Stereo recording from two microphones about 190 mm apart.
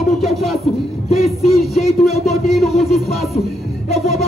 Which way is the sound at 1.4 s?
Centre (ahead or behind).